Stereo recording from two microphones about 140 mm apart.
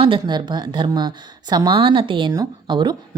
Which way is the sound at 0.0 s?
35° right (ahead or behind).